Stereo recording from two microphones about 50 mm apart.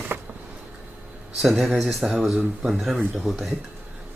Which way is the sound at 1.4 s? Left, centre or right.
Centre.